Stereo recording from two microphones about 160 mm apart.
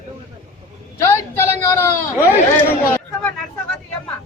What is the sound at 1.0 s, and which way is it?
Speech, 15° left (ahead or behind).